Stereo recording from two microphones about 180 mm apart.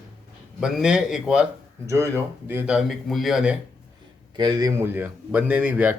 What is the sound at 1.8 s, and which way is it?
Speech, 15° right (ahead or behind).